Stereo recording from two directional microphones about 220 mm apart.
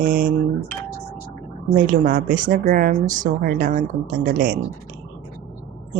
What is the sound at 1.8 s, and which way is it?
Speech, 40° right (ahead or behind).